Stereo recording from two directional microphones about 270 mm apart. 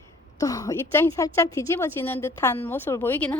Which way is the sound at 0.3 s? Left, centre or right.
Centre.